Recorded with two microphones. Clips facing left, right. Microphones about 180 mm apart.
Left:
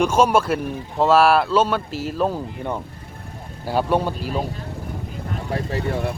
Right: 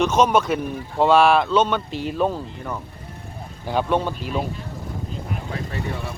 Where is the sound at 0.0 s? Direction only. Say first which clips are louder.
Left 1 dB; 10° left (ahead or behind).